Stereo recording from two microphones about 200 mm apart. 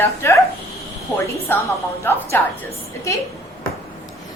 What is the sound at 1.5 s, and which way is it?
Speech, 10° left (ahead or behind).